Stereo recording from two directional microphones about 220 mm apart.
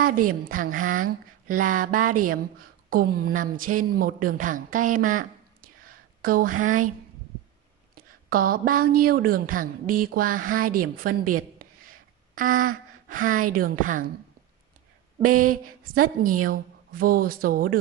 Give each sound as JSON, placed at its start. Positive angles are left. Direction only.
{"t": 0.3, "sound": "speech", "side_deg": -40}
{"t": 7.9, "sound": "a woman's voice", "side_deg": -40}
{"t": 15.2, "sound": "a sound", "side_deg": -85}
{"t": 15.6, "sound": "speech", "side_deg": -40}